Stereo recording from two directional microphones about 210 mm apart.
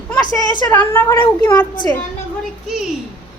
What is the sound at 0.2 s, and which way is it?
A woman's voice, 20° left (ahead or behind).